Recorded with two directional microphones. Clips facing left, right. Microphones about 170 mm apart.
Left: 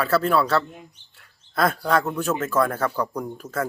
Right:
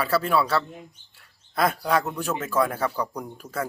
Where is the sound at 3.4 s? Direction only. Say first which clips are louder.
Left 3 dB; 5° left (ahead or behind).